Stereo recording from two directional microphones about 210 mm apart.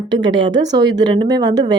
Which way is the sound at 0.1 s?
20° right (ahead or behind).